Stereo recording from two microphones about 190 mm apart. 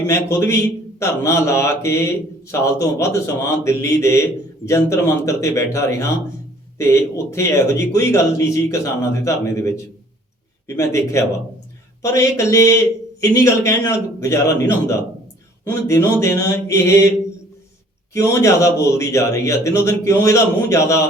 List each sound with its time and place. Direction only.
0.3 s speech: 15° left (ahead or behind)
18.1 s speech: 15° left (ahead or behind)